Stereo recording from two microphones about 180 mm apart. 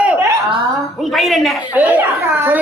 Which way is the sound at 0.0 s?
10° right (ahead or behind).